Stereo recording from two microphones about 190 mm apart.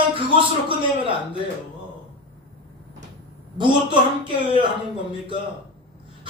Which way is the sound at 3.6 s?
25° right (ahead or behind).